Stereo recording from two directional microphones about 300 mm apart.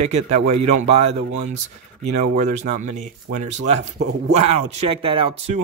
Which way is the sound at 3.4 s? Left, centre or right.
Right.